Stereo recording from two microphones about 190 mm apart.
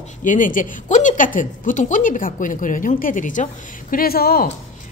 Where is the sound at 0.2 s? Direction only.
45° left (ahead or behind).